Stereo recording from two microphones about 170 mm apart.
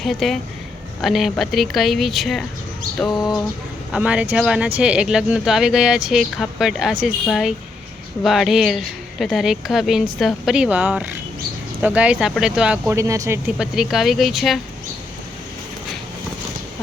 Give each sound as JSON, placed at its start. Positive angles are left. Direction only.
{"t": 0.0, "sound": "speech", "side_deg": 0}
{"t": 13.0, "sound": "speech", "side_deg": -20}
{"t": 13.6, "sound": "speech", "side_deg": 0}